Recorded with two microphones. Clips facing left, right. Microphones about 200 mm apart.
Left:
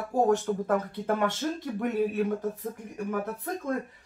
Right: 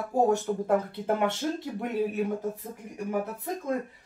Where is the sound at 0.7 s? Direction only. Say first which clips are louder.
Right 3 dB; 15° right (ahead or behind).